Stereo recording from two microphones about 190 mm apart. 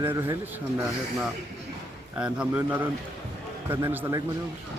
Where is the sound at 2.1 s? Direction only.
5° right (ahead or behind).